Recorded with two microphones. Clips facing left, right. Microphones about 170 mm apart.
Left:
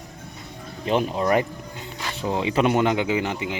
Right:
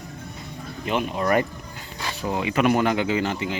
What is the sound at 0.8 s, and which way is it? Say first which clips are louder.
Speech: left 2 dB; 30° left (ahead or behind).